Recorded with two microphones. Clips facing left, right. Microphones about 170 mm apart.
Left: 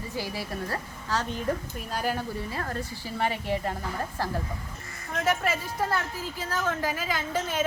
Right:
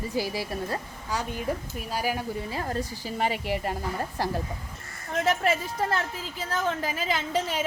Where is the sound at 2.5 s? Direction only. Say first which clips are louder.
Right 2 dB; 20° right (ahead or behind).